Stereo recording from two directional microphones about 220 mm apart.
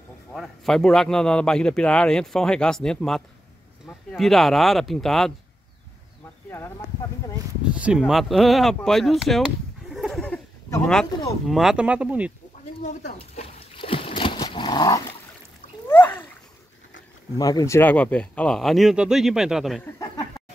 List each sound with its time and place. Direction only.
0.3 s a man's voice: centre (ahead or behind)
7.7 s a man's voice: 5° right (ahead or behind)
9.8 s a sound: centre (ahead or behind)
11.4 s a man's voice: centre (ahead or behind)
13.2 s dog: 25° left (ahead or behind)
17.4 s a man's voice: 15° left (ahead or behind); by 19.8 s centre (ahead or behind)
20.0 s a sound: 15° left (ahead or behind)